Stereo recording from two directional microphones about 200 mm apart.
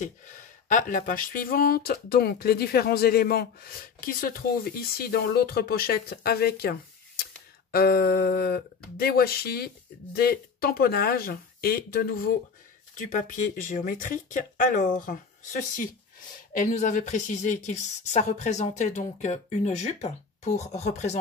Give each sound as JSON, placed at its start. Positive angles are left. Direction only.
{"t": 0.0, "sound": "a woman's voice", "side_deg": 40}